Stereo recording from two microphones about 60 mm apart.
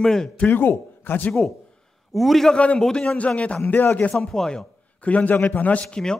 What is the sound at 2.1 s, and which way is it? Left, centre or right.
Speech, centre.